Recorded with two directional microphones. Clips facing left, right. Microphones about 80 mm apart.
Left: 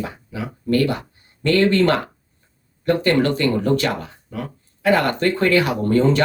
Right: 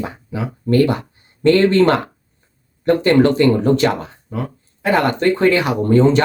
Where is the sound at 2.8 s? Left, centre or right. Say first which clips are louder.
Right 5 dB; right.